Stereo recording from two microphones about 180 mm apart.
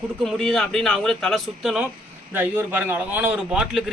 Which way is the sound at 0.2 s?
Centre (ahead or behind).